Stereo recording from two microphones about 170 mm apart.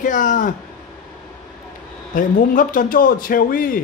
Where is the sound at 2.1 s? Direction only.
55° left (ahead or behind).